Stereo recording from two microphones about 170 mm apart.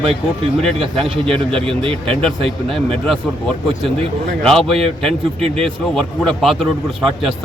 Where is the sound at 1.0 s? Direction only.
35° right (ahead or behind).